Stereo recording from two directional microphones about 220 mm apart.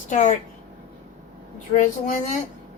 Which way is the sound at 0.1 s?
35° left (ahead or behind).